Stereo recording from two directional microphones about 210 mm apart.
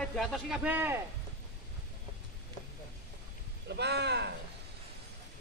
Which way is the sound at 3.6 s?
50° right (ahead or behind).